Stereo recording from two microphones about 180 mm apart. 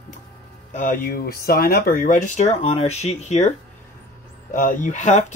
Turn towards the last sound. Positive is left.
turn(degrees=40)  # may be behind; listen again after turning